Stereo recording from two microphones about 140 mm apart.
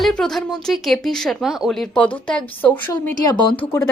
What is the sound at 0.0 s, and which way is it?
Speech, 5° left (ahead or behind).